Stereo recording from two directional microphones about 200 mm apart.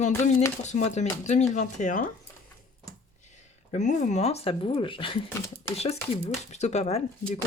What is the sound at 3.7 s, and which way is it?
Speech, 35° left (ahead or behind).